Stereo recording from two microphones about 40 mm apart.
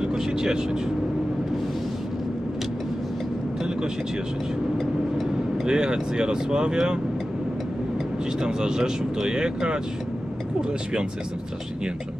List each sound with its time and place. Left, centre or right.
0.0 s speech: centre
5.7 s speech: right
8.4 s speech: centre